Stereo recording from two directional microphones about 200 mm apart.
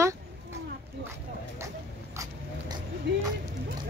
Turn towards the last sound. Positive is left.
turn(degrees=-60)  # may be behind; listen again after turning